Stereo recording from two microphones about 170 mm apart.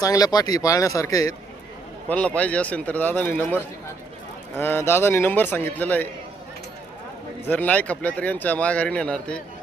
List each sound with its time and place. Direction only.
0.0 s speech: 20° left (ahead or behind)
2.0 s speech: 10° left (ahead or behind)
7.4 s speech: 10° left (ahead or behind)